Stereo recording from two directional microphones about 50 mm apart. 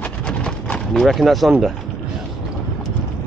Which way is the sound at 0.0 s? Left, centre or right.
Left.